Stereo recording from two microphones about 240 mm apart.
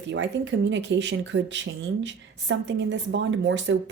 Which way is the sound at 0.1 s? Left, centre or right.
Right.